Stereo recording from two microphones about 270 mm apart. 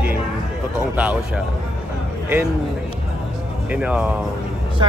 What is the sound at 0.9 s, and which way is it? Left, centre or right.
Speech, centre.